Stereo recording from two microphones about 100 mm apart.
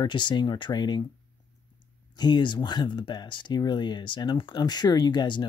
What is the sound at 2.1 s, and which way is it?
Speech, 45° left (ahead or behind).